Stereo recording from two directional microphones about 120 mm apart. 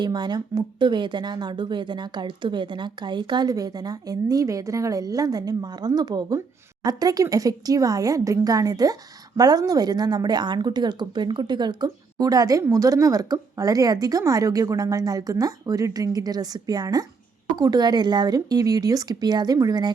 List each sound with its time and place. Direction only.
0.0 s speech: 35° right (ahead or behind)